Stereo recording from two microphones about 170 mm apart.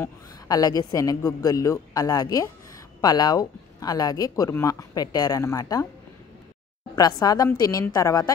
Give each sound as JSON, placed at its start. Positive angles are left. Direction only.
{"t": 0.0, "sound": "speech", "side_deg": 20}
{"t": 7.0, "sound": "speech", "side_deg": 20}